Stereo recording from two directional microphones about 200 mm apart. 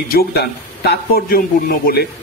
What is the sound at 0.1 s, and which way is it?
Speech, 50° left (ahead or behind).